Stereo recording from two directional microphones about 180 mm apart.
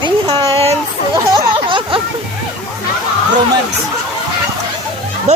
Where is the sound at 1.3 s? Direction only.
25° right (ahead or behind).